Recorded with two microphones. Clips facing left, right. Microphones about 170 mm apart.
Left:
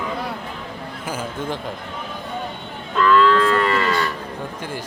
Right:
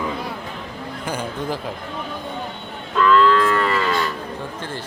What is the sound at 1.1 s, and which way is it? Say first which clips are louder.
Speech: right 1 dB; 5° left (ahead or behind).